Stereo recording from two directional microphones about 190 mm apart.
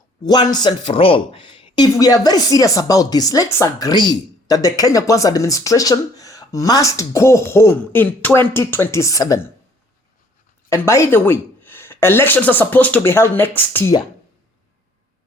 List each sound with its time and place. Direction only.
0.3 s speech: 20° left (ahead or behind)
10.7 s speech: 15° left (ahead or behind)